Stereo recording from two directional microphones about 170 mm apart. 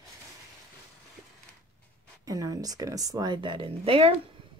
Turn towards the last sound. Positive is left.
turn(degrees=-35)  # may be behind; listen again after turning